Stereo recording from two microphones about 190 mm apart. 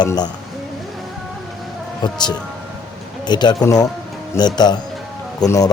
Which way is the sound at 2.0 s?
20° left (ahead or behind).